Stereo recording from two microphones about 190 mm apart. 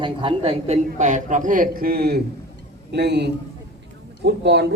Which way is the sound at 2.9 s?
65° right (ahead or behind).